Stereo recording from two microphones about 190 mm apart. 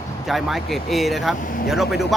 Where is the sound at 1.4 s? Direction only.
45° left (ahead or behind).